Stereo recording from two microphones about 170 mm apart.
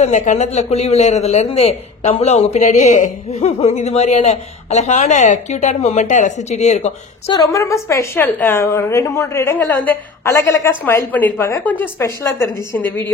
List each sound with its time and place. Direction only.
0.0 s speech: 45° left (ahead or behind)
7.5 s a woman's voice: 15° left (ahead or behind)